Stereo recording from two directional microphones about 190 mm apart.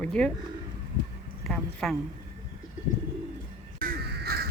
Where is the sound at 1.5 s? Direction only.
5° left (ahead or behind).